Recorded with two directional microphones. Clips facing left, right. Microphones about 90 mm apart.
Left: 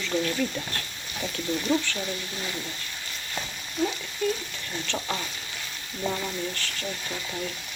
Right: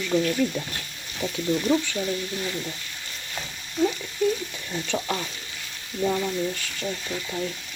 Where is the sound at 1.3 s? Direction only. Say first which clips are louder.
Right 3 dB; 15° right (ahead or behind).